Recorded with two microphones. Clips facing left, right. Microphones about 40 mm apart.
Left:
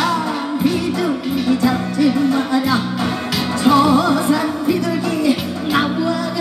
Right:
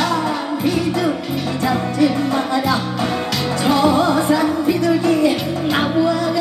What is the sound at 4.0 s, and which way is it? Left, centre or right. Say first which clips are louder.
Music: even; right.